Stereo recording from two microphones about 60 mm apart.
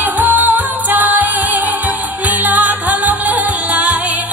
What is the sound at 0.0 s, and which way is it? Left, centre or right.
Music, right.